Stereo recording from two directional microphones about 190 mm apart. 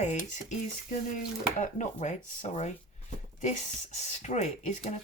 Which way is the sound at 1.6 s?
40° left (ahead or behind).